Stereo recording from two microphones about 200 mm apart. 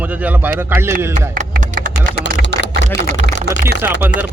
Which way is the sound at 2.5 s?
55° right (ahead or behind).